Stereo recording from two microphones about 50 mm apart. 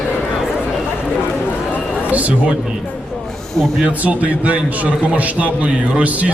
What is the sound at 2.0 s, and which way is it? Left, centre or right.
Speech, right.